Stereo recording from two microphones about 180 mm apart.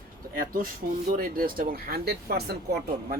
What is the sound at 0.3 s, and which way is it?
A man's voice, 50° right (ahead or behind).